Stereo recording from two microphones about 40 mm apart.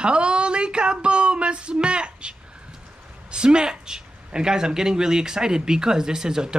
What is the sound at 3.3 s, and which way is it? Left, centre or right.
A woman's voice, right.